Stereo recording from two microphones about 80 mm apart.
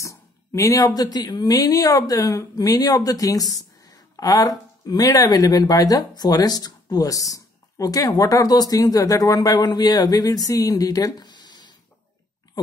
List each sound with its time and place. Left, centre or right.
0.0 s speech: left